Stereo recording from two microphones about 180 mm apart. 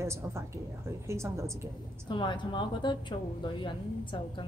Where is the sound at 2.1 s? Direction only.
25° left (ahead or behind).